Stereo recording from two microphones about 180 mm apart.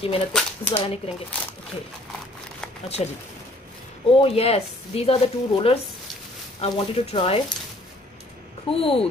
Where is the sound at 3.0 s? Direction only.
35° left (ahead or behind).